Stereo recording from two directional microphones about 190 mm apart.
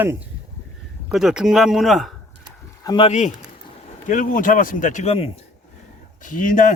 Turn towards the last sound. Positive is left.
turn(degrees=45)  # may be behind; listen again after turning